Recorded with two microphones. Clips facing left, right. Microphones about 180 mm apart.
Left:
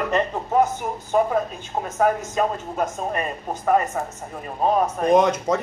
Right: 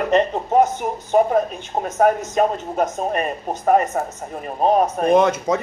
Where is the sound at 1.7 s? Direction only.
35° right (ahead or behind).